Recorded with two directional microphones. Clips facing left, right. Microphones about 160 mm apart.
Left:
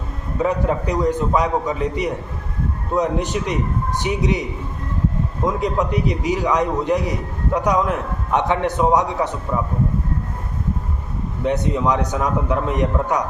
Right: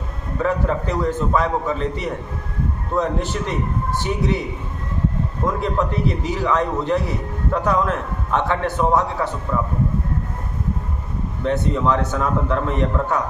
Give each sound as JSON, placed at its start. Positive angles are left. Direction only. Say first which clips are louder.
{"t": 0.3, "sound": "a man's voice", "louder": "left 1 dB", "side_deg": 15}
{"t": 5.5, "sound": "a man's voice", "louder": "left 2 dB", "side_deg": 15}
{"t": 11.4, "sound": "a man's voice", "louder": "even", "side_deg": 15}